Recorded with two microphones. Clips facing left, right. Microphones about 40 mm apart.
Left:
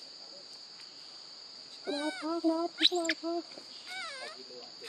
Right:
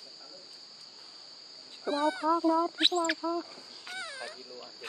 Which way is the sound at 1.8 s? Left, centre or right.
Centre.